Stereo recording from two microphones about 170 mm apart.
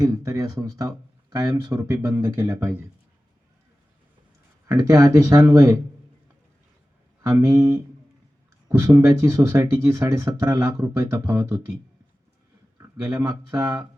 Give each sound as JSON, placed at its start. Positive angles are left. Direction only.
{"t": 0.0, "sound": "speech", "side_deg": -20}
{"t": 4.6, "sound": "speech", "side_deg": -20}
{"t": 7.2, "sound": "speech", "side_deg": -20}
{"t": 8.8, "sound": "speech", "side_deg": -20}